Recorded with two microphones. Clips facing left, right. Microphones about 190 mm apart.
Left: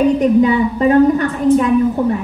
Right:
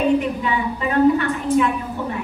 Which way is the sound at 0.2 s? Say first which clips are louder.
Left 11 dB; 40° left (ahead or behind).